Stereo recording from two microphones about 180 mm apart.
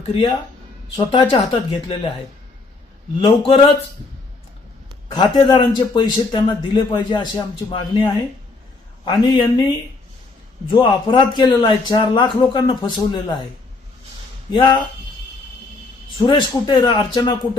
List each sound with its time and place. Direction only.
0.1 s a man's voice: 30° left (ahead or behind)
3.2 s a man's voice: 30° left (ahead or behind)
5.1 s a man's voice: 25° left (ahead or behind)
14.5 s a man's voice: 25° left (ahead or behind)
16.2 s a man's voice: 25° left (ahead or behind)